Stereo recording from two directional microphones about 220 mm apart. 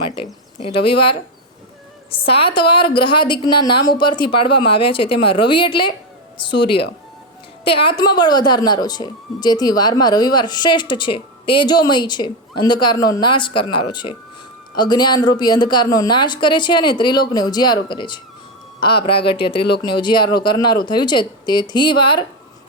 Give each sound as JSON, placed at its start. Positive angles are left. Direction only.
{"t": 0.6, "sound": "speech", "side_deg": 25}